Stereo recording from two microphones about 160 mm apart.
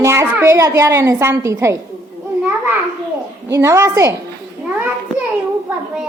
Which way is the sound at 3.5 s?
15° right (ahead or behind).